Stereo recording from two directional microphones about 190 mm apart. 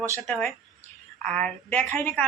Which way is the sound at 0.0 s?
10° left (ahead or behind).